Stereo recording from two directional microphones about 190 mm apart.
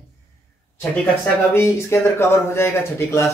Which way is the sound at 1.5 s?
15° left (ahead or behind).